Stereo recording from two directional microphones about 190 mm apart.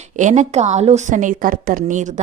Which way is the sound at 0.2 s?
40° right (ahead or behind).